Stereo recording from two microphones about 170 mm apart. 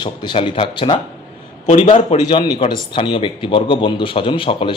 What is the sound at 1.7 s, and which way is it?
Speech, 45° left (ahead or behind).